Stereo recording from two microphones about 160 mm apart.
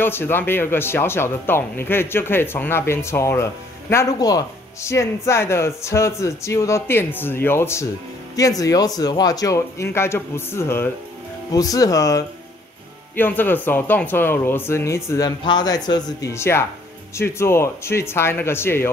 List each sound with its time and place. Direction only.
0.0 s speech: 15° left (ahead or behind)